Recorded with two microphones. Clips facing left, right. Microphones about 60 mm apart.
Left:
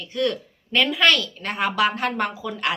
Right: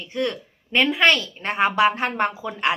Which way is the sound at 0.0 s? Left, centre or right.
Right.